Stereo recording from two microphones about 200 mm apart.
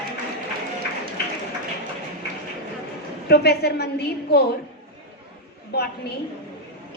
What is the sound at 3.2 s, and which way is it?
A woman's voice, 55° left (ahead or behind).